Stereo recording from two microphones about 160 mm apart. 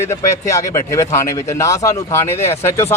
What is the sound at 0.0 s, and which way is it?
A man's voice, 20° left (ahead or behind).